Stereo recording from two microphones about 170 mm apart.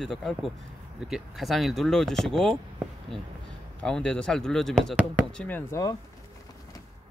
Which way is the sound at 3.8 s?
5° left (ahead or behind).